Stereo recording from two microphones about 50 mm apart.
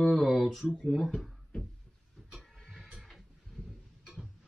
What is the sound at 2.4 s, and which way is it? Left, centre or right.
Music, centre.